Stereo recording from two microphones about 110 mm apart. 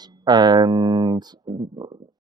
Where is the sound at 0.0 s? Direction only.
40° right (ahead or behind).